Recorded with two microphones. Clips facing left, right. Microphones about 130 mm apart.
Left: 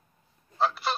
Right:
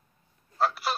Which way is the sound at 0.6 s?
5° right (ahead or behind).